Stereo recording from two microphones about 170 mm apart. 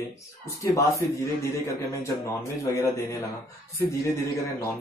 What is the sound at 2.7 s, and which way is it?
Speech, 15° left (ahead or behind).